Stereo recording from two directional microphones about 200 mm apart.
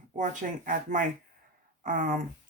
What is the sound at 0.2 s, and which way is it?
Speech, 40° right (ahead or behind).